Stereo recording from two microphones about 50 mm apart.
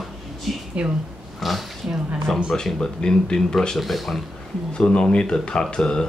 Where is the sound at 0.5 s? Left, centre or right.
Centre.